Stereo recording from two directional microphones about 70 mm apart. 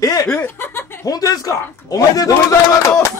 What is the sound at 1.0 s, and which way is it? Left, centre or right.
A man's voice, left.